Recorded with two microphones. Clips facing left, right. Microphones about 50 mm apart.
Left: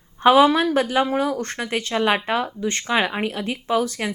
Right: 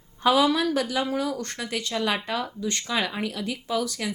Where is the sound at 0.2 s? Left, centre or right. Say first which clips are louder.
Left 6 dB; left.